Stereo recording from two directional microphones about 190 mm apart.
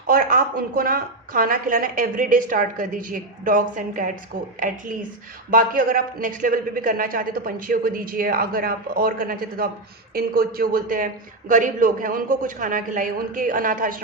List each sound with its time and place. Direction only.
0.1 s speech: 45° right (ahead or behind)
5.5 s speech: 45° right (ahead or behind)